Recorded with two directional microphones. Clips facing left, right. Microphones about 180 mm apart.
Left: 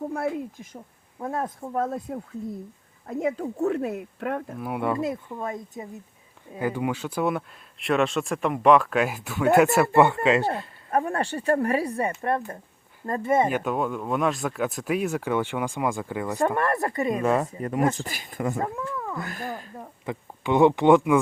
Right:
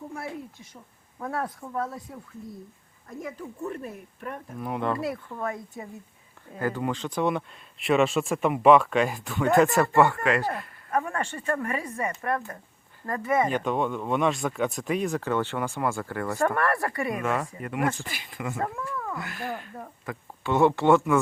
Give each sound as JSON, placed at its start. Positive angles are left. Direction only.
{"t": 0.1, "sound": "speech", "side_deg": 75}
{"t": 1.2, "sound": "speech", "side_deg": 25}
{"t": 1.7, "sound": "speech", "side_deg": 50}
{"t": 3.1, "sound": "speech", "side_deg": 65}
{"t": 4.6, "sound": "speech", "side_deg": 10}
{"t": 4.9, "sound": "speech", "side_deg": 20}
{"t": 13.5, "sound": "speech", "side_deg": 5}
{"t": 17.6, "sound": "speech", "side_deg": 35}
{"t": 19.8, "sound": "speech", "side_deg": 15}